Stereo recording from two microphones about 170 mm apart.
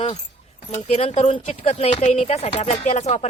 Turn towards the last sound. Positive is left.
turn(degrees=40)  # may be behind; listen again after turning